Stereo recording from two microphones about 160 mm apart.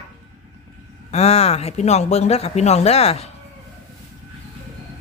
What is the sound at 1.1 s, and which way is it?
Speech, 40° left (ahead or behind).